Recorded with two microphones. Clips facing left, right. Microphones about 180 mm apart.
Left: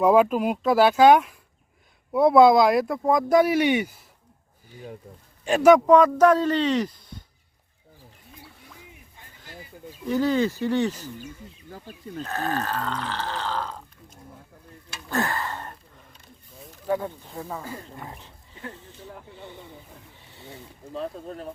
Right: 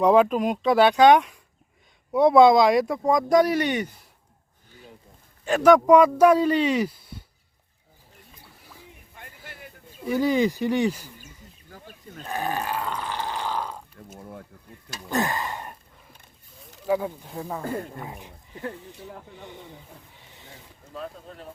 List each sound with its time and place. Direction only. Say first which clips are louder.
0.0 s speech: even; 5° left (ahead or behind)
5.8 s speech: right 1 dB; 10° right (ahead or behind)
10.1 s speech: right 1 dB; 10° right (ahead or behind)
12.2 s speech: even; 15° right (ahead or behind)
15.1 s a sound: right 1 dB; 15° right (ahead or behind)
16.8 s speech: right 2 dB; 5° right (ahead or behind)
18.7 s speech: right 2 dB; 15° right (ahead or behind)
20.1 s wild animals: left 3 dB; 15° right (ahead or behind)
20.9 s speech: left 5 dB; 35° left (ahead or behind)